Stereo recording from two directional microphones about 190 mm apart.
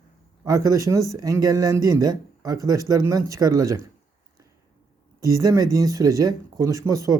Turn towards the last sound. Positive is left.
turn(degrees=-15)  # may be behind; listen again after turning